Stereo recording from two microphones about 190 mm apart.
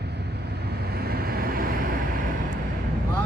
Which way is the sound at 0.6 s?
55° right (ahead or behind).